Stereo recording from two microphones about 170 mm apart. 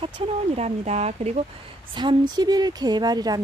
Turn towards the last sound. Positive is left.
turn(degrees=-25)  # may be behind; listen again after turning